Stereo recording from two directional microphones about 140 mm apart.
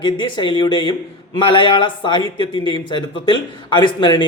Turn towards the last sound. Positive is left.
turn(degrees=35)  # may be behind; listen again after turning